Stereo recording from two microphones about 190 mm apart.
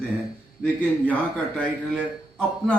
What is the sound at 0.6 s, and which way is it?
A man's voice, 10° left (ahead or behind).